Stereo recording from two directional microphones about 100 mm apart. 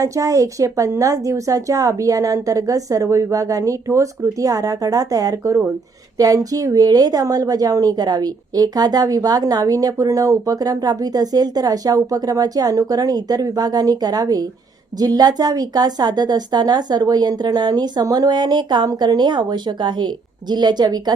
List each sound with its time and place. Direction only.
0.0 s a woman's voice: 35° right (ahead or behind)